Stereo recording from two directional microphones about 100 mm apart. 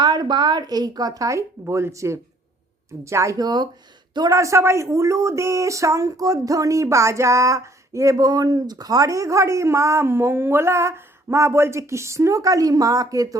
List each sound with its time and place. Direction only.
0.0 s speech: 45° right (ahead or behind); by 3.3 s 30° right (ahead or behind)
3.3 s speech: 45° right (ahead or behind)
4.3 s speech: 30° right (ahead or behind)